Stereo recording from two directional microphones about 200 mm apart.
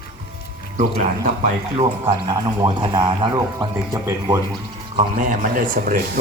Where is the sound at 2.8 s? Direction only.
25° right (ahead or behind).